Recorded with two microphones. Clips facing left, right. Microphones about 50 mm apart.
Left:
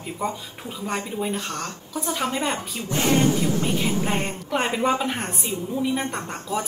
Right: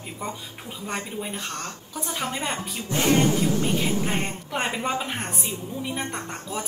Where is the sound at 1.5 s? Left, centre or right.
Left.